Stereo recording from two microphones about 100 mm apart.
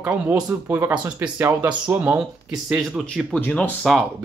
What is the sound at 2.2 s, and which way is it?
Speech, 5° right (ahead or behind).